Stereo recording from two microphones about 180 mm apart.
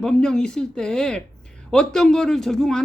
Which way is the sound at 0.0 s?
5° left (ahead or behind).